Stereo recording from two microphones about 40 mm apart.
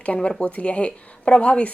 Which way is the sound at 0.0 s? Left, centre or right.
Left.